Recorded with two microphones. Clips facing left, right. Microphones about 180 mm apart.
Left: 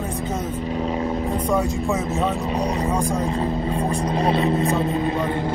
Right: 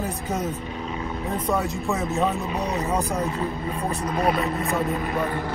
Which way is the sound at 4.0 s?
30° left (ahead or behind).